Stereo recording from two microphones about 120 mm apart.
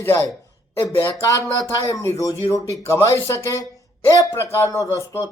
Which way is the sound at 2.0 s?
25° left (ahead or behind).